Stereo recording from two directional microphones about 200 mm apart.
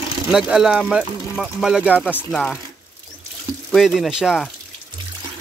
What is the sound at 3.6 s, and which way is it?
Speech, centre (ahead or behind).